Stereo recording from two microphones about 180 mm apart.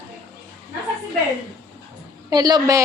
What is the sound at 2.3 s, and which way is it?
Speech, 25° right (ahead or behind).